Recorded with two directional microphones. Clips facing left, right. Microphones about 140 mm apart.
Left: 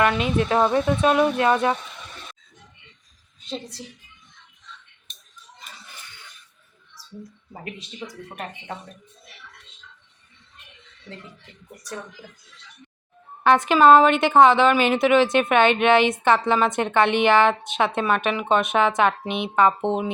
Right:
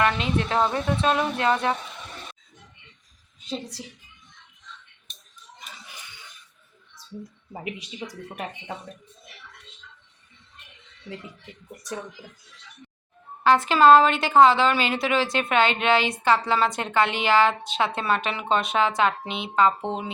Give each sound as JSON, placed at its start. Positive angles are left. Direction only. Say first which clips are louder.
{"t": 0.0, "sound": "speech", "louder": "left 3 dB", "side_deg": 15}
{"t": 3.5, "sound": "speech", "louder": "even", "side_deg": -10}
{"t": 7.6, "sound": "speech", "louder": "right 1 dB", "side_deg": -15}
{"t": 13.4, "sound": "a woman's voice", "louder": "left 2 dB", "side_deg": 20}